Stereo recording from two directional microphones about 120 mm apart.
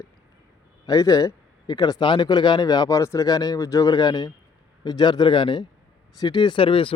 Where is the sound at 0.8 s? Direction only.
30° left (ahead or behind).